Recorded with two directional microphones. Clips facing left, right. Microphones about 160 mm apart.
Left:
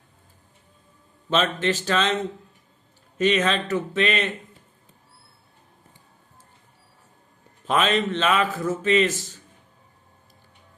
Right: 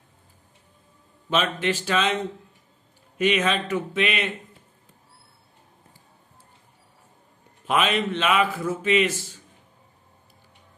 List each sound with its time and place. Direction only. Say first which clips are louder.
1.3 s a man's voice: left 1 dB; 10° right (ahead or behind)
3.2 s a man's voice: left 1 dB; 10° right (ahead or behind)
7.6 s a man's voice: left 1 dB; 10° right (ahead or behind)